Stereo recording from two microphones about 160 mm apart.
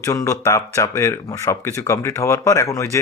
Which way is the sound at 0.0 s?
20° left (ahead or behind).